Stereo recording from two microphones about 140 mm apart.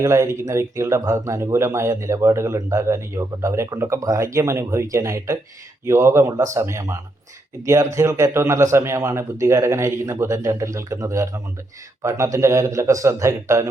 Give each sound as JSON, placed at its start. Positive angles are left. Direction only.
{"t": 0.0, "sound": "speech", "side_deg": -20}